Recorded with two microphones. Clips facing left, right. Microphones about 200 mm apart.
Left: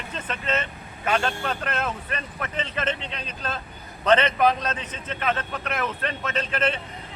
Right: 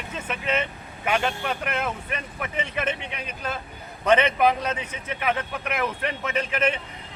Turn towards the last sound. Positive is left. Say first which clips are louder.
# right 1 dB
turn(degrees=-10)  # may be behind; listen again after turning